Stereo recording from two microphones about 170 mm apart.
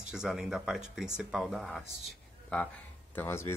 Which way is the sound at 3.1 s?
15° left (ahead or behind).